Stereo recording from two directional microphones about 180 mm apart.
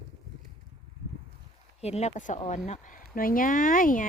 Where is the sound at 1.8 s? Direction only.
35° left (ahead or behind).